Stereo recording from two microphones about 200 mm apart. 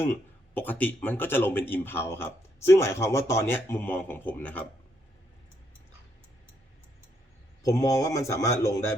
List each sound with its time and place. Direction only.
0.5 s speech: 10° left (ahead or behind)
7.6 s speech: 15° left (ahead or behind)